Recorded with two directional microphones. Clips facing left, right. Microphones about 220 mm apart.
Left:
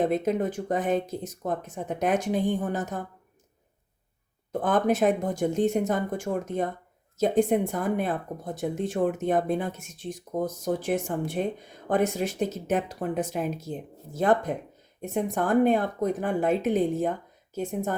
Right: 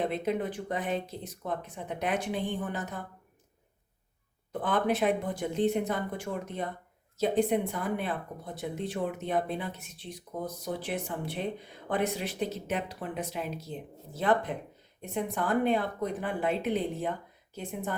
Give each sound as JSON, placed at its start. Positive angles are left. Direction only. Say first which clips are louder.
{"t": 0.0, "sound": "speech", "louder": "left 5 dB", "side_deg": 45}
{"t": 4.6, "sound": "speech", "louder": "left 5 dB", "side_deg": 45}